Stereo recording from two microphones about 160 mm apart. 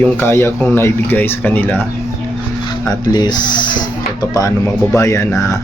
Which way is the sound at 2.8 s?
25° left (ahead or behind).